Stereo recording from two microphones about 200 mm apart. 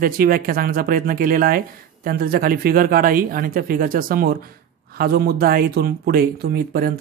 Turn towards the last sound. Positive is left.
turn(degrees=-45)  # may be behind; listen again after turning